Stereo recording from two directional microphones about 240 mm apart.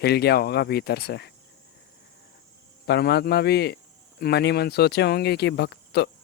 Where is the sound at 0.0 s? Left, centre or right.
Left.